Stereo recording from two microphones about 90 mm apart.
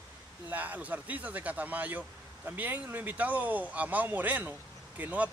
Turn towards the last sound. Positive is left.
turn(degrees=-15)  # may be behind; listen again after turning